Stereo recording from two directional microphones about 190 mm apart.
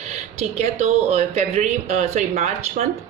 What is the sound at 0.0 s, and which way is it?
Speech, 35° right (ahead or behind).